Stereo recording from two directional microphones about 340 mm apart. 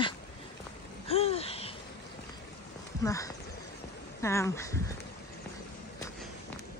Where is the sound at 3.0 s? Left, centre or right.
Centre.